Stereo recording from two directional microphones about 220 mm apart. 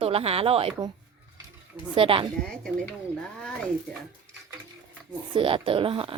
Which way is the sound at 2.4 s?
5° left (ahead or behind).